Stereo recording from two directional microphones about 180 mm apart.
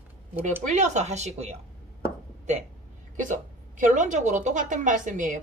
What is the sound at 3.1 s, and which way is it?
A woman's voice, 45° right (ahead or behind).